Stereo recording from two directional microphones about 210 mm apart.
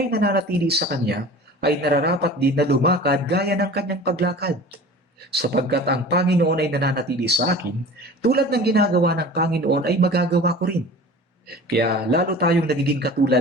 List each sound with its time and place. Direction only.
0.1 s speech: 50° right (ahead or behind)